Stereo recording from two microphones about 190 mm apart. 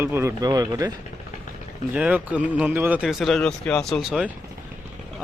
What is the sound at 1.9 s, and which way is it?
A man's voice, 5° right (ahead or behind).